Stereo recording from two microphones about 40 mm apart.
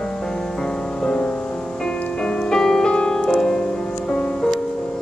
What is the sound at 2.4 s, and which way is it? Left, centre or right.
Music, centre.